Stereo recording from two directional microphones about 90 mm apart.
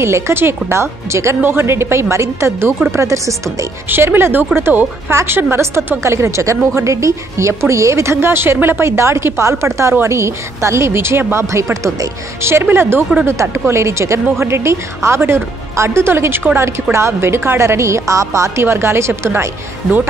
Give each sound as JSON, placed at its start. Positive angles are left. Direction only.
{"t": 0.0, "sound": "a woman's voice", "side_deg": -25}